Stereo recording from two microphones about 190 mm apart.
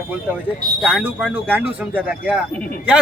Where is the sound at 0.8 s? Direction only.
5° right (ahead or behind).